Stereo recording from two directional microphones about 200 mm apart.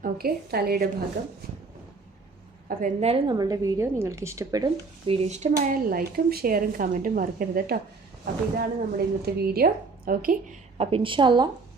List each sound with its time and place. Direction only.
0.0 s speech: 50° right (ahead or behind)
2.6 s a woman's voice: 35° right (ahead or behind)
5.5 s speech: 50° right (ahead or behind)
10.8 s a woman's voice: 25° right (ahead or behind)